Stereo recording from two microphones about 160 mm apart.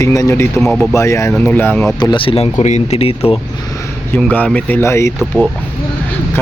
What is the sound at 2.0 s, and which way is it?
Speech, 30° left (ahead or behind).